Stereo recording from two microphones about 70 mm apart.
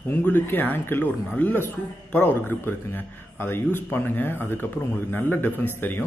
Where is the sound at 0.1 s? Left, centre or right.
Left.